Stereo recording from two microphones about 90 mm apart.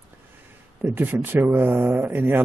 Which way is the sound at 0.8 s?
20° right (ahead or behind).